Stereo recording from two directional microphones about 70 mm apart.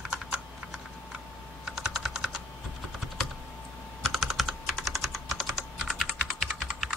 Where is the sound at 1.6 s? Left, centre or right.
Centre.